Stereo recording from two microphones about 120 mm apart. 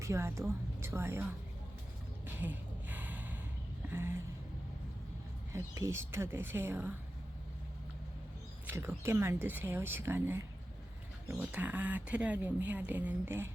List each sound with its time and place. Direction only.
0.0 s speech: 25° right (ahead or behind)
2.2 s gasp: 15° right (ahead or behind)
3.9 s a sound: 20° right (ahead or behind)
5.5 s speech: 25° right (ahead or behind)
8.6 s speech: 20° right (ahead or behind)